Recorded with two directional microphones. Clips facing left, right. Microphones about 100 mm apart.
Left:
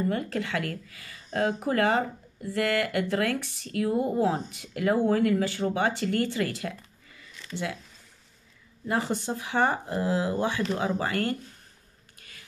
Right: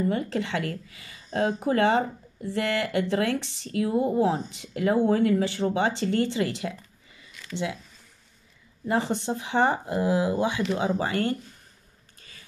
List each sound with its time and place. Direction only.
0.1 s speech: 25° right (ahead or behind)
8.8 s speech: 25° right (ahead or behind)
12.2 s a sound: 30° right (ahead or behind)